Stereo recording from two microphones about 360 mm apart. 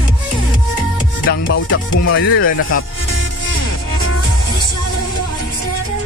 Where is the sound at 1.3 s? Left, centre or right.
Left.